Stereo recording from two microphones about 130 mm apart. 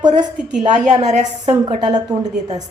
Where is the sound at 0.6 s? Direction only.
65° right (ahead or behind).